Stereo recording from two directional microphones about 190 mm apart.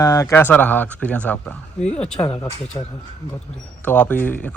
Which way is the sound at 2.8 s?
25° left (ahead or behind).